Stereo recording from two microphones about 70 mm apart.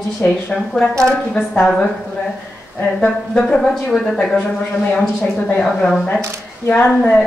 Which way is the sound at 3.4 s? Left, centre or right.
Centre.